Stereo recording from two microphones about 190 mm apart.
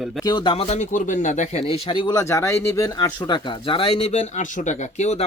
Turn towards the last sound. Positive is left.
turn(degrees=35)  # may be behind; listen again after turning